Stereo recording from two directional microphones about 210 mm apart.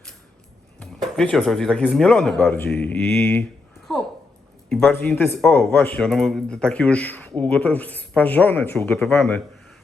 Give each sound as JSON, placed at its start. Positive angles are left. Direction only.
{"t": 0.8, "sound": "speech", "side_deg": 5}
{"t": 4.7, "sound": "speech", "side_deg": 10}